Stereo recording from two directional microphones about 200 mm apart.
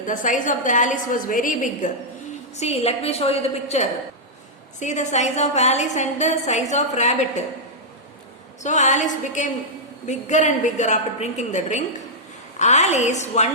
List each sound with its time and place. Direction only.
0.0 s a woman's voice: 40° left (ahead or behind)
2.6 s a woman's voice: 30° left (ahead or behind)
8.6 s a woman's voice: 35° left (ahead or behind)